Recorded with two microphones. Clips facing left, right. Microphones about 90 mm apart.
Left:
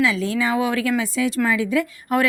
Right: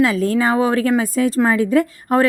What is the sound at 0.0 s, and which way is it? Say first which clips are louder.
A woman's voice: right 5 dB; 45° right (ahead or behind).